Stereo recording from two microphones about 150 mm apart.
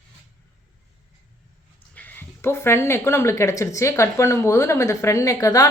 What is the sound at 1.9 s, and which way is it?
Speech, 10° left (ahead or behind).